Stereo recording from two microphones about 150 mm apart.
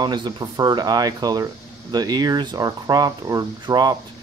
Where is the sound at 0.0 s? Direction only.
30° right (ahead or behind).